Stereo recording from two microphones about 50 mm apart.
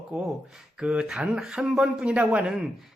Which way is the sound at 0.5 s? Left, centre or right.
Centre.